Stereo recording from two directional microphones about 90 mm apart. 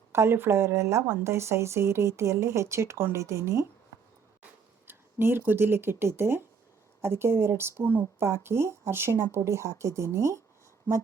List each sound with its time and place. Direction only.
0.1 s speech: 25° right (ahead or behind)
4.9 s a sound: 25° right (ahead or behind)
5.5 s speech: 25° right (ahead or behind)
10.9 s speech: 20° right (ahead or behind)